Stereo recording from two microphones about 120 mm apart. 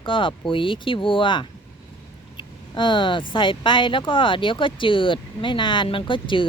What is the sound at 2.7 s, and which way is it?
Speech, 45° left (ahead or behind).